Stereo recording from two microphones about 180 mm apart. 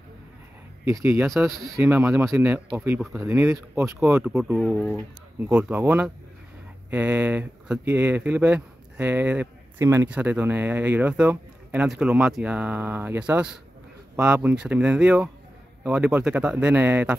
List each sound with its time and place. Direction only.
0.8 s speech: 15° right (ahead or behind)
1.3 s speech: centre (ahead or behind)
1.8 s speech: 15° right (ahead or behind)
3.3 s speech: 15° right (ahead or behind)